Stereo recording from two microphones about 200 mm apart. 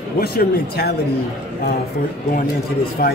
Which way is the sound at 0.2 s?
50° left (ahead or behind).